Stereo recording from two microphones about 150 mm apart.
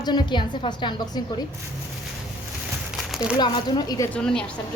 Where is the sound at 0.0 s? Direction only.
30° left (ahead or behind).